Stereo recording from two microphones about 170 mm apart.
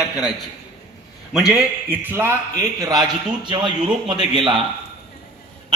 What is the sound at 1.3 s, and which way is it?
A man's voice, 5° right (ahead or behind).